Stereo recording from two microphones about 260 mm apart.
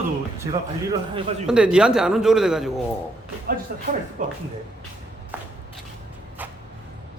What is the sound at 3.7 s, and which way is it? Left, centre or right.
Speech, right.